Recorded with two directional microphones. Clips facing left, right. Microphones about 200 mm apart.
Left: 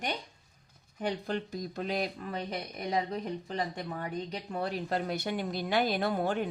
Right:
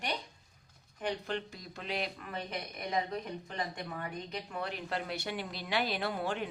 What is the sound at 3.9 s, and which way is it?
Speech, 35° left (ahead or behind).